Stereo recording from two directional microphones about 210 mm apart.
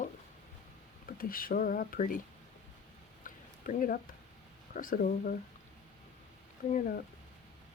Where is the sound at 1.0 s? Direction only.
40° left (ahead or behind).